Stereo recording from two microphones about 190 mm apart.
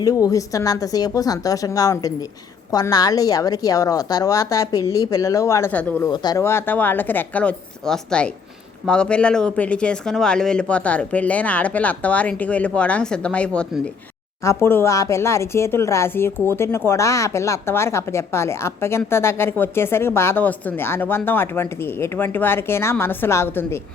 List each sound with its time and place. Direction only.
0.0 s a woman's voice: 20° left (ahead or behind)
6.1 s speech: 20° left (ahead or behind)